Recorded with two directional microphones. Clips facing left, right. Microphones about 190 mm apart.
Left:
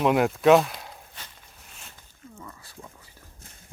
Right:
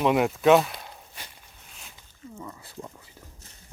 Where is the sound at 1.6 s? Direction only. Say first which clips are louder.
Left 1 dB; centre (ahead or behind).